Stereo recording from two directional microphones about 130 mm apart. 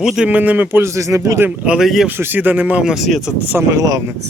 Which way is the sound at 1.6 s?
5° right (ahead or behind).